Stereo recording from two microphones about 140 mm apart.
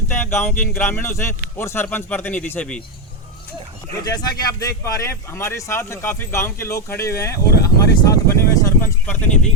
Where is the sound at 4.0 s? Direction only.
30° left (ahead or behind).